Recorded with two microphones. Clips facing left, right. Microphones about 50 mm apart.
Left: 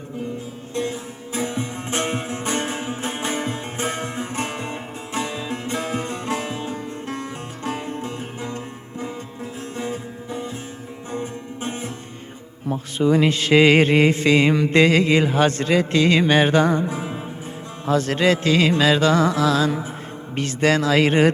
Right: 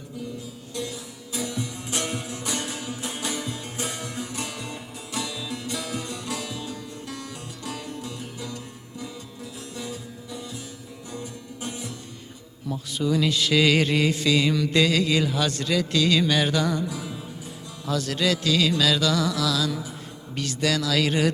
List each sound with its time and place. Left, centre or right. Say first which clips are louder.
0.7 s music: left 7 dB; left
12.6 s mantra: left 6 dB; left